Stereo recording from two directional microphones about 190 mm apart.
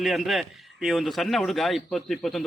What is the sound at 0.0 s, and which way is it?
Speech, centre (ahead or behind).